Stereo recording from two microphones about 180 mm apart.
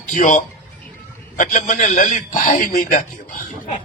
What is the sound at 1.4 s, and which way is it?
Speech, 45° left (ahead or behind).